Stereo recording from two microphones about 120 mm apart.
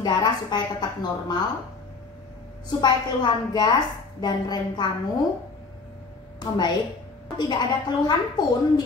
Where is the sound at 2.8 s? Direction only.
35° left (ahead or behind).